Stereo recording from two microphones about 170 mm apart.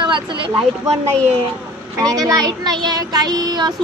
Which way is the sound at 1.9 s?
20° right (ahead or behind).